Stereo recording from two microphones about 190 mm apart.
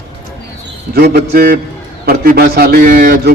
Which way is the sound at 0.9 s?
55° right (ahead or behind).